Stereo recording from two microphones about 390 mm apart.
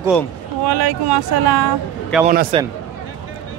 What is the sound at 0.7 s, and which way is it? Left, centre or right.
Speech, right.